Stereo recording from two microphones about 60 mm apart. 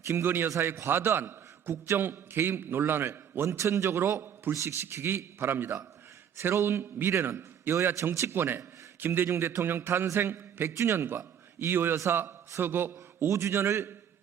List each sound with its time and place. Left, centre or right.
0.1 s a man's voice: right
0.4 s a man's voice: right
0.9 s a man's voice: right
3.6 s a man's voice: right
8.3 s a man's voice: right
13.2 s a man's voice: right